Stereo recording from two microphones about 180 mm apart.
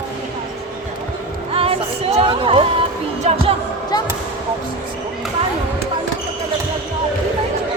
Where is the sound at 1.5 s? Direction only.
30° right (ahead or behind).